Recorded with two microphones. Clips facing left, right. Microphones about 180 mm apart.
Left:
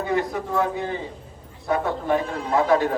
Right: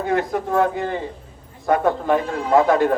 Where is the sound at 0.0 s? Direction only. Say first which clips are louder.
Right 3 dB; 55° right (ahead or behind).